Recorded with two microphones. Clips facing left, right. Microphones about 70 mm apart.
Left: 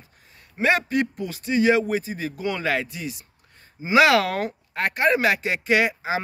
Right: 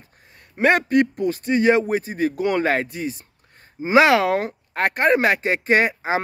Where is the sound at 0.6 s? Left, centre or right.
Right.